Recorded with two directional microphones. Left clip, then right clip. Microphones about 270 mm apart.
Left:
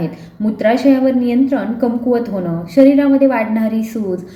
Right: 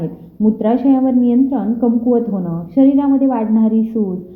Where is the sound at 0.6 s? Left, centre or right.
Centre.